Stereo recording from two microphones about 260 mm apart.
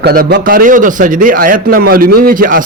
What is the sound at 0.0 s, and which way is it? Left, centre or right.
A man's voice, right.